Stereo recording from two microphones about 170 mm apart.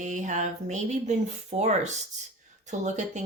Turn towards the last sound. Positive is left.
turn(degrees=-45)  # may be behind; listen again after turning